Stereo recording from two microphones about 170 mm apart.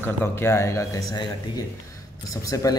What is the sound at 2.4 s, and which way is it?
Speech, 20° left (ahead or behind).